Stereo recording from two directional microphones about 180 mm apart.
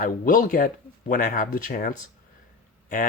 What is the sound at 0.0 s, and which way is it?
Speech, 50° left (ahead or behind).